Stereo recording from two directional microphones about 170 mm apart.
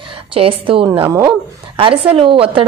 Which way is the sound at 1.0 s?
20° right (ahead or behind).